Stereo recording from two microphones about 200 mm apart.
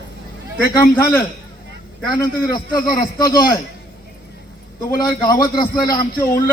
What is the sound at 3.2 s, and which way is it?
Speech, 20° left (ahead or behind).